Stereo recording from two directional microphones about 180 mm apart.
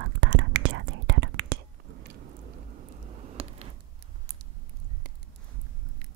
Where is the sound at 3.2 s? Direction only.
35° right (ahead or behind).